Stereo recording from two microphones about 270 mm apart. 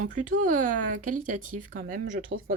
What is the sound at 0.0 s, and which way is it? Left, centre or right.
Speech, right.